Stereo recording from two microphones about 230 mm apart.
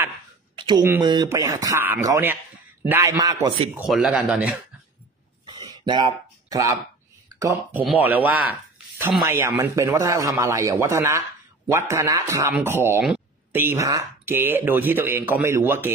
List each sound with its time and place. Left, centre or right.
0.6 s speech: centre
3.7 s speech: centre
5.9 s speech: centre